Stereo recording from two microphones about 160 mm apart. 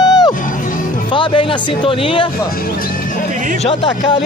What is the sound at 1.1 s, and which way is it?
Speech, 30° left (ahead or behind).